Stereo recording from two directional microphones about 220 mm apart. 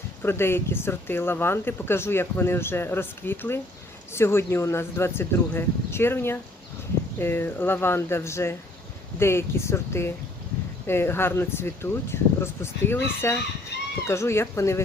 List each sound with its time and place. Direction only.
0.2 s speech: 10° left (ahead or behind)
13.7 s chicken: 50° left (ahead or behind)
14.1 s speech: 10° left (ahead or behind)